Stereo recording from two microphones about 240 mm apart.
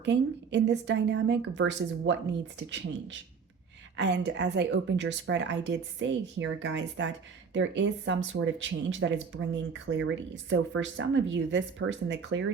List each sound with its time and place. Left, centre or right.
0.0 s speech: right